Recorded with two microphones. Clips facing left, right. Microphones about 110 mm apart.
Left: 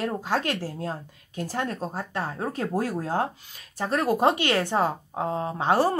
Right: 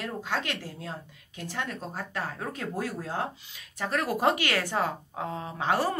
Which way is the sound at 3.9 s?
30° left (ahead or behind).